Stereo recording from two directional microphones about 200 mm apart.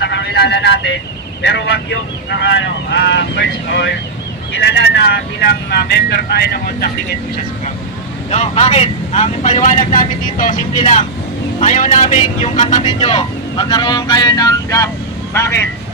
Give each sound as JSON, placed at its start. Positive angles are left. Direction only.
{"t": 0.0, "sound": "vehicle", "side_deg": 60}
{"t": 1.4, "sound": "speech", "side_deg": 60}
{"t": 8.3, "sound": "speech", "side_deg": 30}